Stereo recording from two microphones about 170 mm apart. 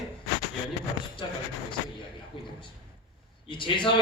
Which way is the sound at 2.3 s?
30° left (ahead or behind).